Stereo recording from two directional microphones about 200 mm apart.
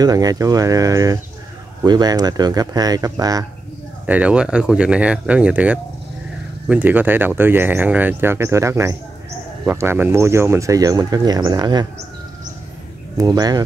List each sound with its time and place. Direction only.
0.0 s speech: 20° right (ahead or behind)
4.0 s speech: 5° right (ahead or behind)
13.2 s speech: 20° right (ahead or behind)